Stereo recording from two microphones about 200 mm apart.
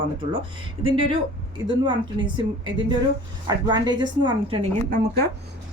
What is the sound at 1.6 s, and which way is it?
A woman's voice, 25° right (ahead or behind).